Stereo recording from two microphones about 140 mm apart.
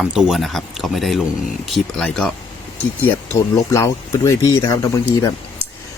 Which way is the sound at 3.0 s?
20° left (ahead or behind).